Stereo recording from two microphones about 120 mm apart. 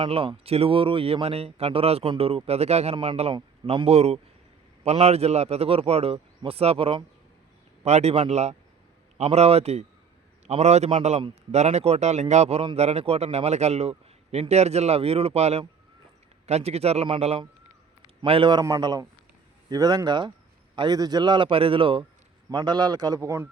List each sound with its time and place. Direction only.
0.0 s speech: 50° right (ahead or behind)
2.9 s speech: 45° right (ahead or behind)
7.9 s a man's voice: 65° right (ahead or behind)
18.3 s speech: 45° right (ahead or behind)
18.6 s a man's voice: 35° right (ahead or behind)